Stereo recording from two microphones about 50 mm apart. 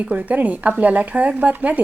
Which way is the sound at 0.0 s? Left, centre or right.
Right.